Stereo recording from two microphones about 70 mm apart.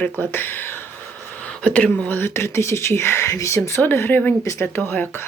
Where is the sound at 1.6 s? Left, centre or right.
Centre; by 3.6 s left.